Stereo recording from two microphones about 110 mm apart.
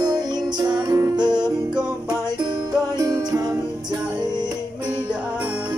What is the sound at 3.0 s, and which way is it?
Music, 35° right (ahead or behind).